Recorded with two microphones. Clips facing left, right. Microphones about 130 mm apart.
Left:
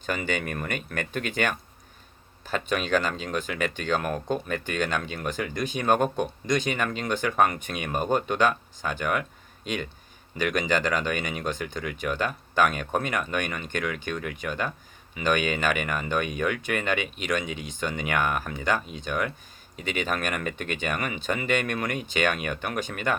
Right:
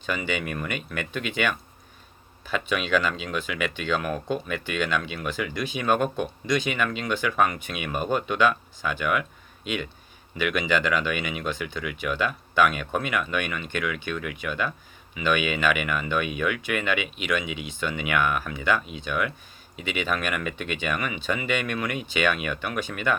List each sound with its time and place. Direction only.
0.0 s speech: 45° left (ahead or behind)